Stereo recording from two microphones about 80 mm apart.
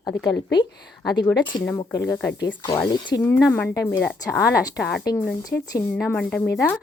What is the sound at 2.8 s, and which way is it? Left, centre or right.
Speech, left.